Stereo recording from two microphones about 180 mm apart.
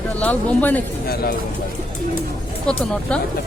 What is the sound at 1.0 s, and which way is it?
Speech, 60° left (ahead or behind).